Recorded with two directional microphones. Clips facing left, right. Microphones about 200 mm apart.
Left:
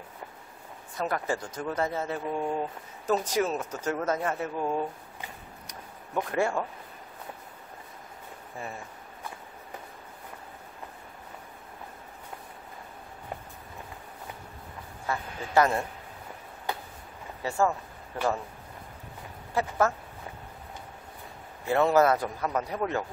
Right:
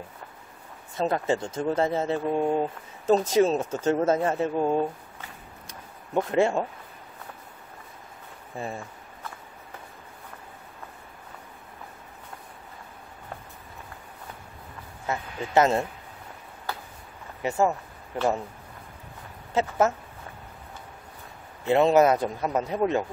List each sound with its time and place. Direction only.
0.9 s speech: 25° right (ahead or behind)
5.7 s a sound: 25° right (ahead or behind)
15.0 s speech: 20° right (ahead or behind)
17.4 s speech: 20° right (ahead or behind)
19.6 s speech: 20° right (ahead or behind)
21.6 s speech: 20° right (ahead or behind)